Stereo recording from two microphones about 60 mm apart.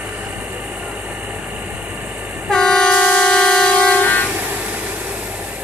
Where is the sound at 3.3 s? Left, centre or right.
Centre.